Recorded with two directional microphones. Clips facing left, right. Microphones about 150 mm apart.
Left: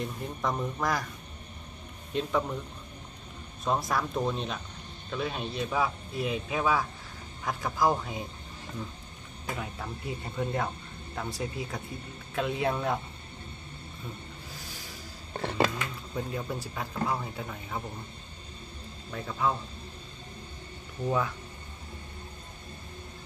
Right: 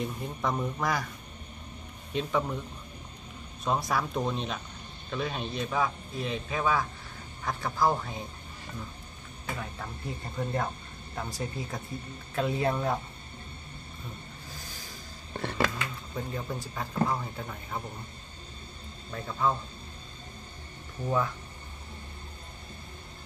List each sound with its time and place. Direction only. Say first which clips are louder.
0.0 s a man's voice: right 1 dB; centre (ahead or behind)
2.1 s a man's voice: even; centre (ahead or behind)
3.6 s a man's voice: even; centre (ahead or behind)
9.6 s a man's voice: left 1 dB; 5° left (ahead or behind)
15.4 s a sound: left 2 dB; 20° left (ahead or behind)
16.2 s a man's voice: left 1 dB; 5° left (ahead or behind)
19.0 s a man's voice: right 1 dB; centre (ahead or behind)
21.0 s a man's voice: even; 5° left (ahead or behind)